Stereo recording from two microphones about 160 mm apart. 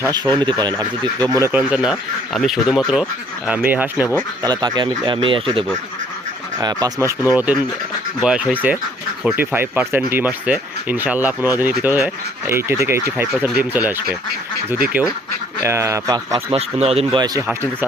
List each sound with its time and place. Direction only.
0.0 s speech: 25° right (ahead or behind)
4.4 s speech: 25° right (ahead or behind)
7.3 s speech: 10° right (ahead or behind)
16.5 s speech: 40° right (ahead or behind)
17.2 s speech: 25° right (ahead or behind)
17.4 s speech: 15° right (ahead or behind)